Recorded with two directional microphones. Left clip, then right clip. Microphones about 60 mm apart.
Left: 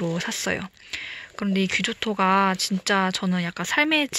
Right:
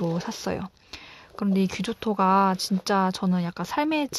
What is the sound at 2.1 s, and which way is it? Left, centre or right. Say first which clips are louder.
Speech: even; right.